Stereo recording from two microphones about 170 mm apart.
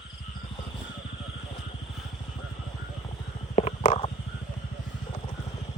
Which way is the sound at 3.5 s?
35° left (ahead or behind).